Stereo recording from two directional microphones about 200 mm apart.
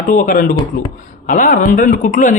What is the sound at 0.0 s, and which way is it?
Speech, 45° left (ahead or behind).